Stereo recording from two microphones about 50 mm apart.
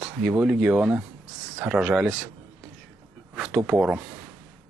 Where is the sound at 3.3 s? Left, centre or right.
Centre.